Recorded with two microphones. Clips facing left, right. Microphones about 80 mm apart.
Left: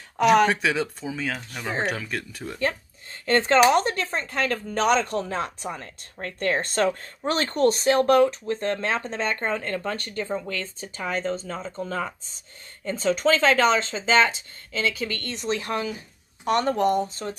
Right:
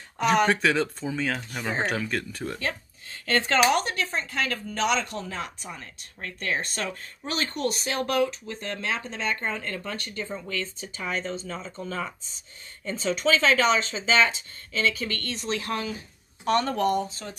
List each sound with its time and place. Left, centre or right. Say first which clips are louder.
0.2 s speech: left 3 dB; centre
2.6 s speech: left 5 dB; left
6.1 s speech: left 5 dB; left
15.0 s speech: left 1 dB; centre